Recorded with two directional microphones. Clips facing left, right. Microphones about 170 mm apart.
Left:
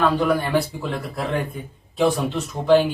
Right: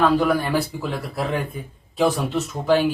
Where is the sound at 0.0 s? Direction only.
Centre (ahead or behind).